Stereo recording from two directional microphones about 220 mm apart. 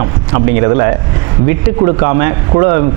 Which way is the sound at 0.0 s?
25° right (ahead or behind).